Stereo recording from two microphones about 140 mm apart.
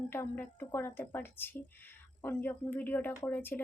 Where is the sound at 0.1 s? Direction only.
15° left (ahead or behind).